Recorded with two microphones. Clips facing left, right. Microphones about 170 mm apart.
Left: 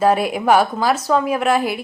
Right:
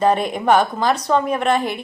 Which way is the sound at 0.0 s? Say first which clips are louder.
Left 1 dB; 5° left (ahead or behind).